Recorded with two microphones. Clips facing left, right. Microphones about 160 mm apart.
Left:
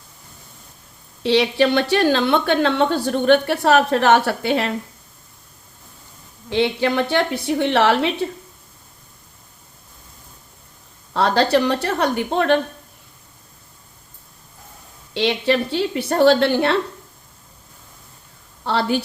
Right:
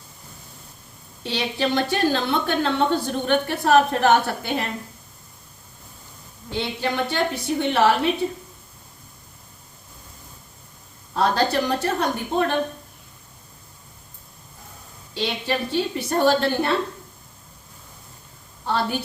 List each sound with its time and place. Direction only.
1.2 s a woman's voice: 75° left (ahead or behind)
6.5 s a woman's voice: 70° left (ahead or behind)
11.1 s a woman's voice: 75° left (ahead or behind)
15.1 s a woman's voice: 75° left (ahead or behind)
18.6 s a woman's voice: 80° left